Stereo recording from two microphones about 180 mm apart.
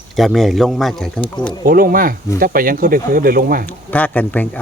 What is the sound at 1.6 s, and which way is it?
Speech, 55° right (ahead or behind).